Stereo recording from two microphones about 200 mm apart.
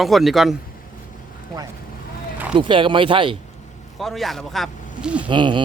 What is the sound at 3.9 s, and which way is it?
Speech, centre (ahead or behind).